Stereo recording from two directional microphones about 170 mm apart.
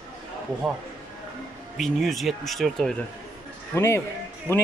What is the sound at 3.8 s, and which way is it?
Speech, 15° left (ahead or behind).